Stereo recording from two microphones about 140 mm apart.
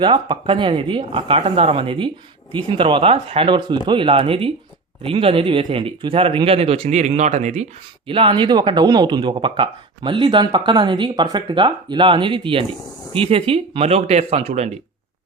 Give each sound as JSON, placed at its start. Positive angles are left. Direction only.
{"t": 0.0, "sound": "speech", "side_deg": -35}
{"t": 8.0, "sound": "speech", "side_deg": -40}